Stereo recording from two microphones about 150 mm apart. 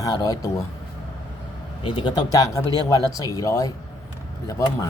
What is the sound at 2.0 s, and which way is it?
Speech, 30° left (ahead or behind).